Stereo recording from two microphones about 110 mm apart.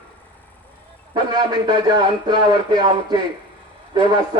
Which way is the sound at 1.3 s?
40° right (ahead or behind).